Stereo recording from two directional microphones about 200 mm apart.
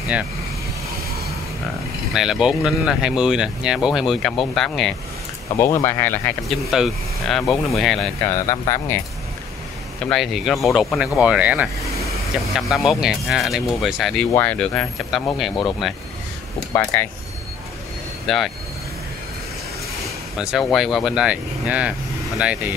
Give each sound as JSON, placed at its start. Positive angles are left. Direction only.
{"t": 2.1, "sound": "speech", "side_deg": 0}
{"t": 5.6, "sound": "speech", "side_deg": 15}
{"t": 6.7, "sound": "speech", "side_deg": 0}
{"t": 8.3, "sound": "speech", "side_deg": 15}
{"t": 10.0, "sound": "speech", "side_deg": 0}
{"t": 16.7, "sound": "speech", "side_deg": 10}
{"t": 18.2, "sound": "speech", "side_deg": 0}
{"t": 20.3, "sound": "speech", "side_deg": 0}